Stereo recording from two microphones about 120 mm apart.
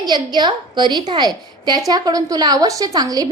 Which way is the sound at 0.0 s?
35° right (ahead or behind).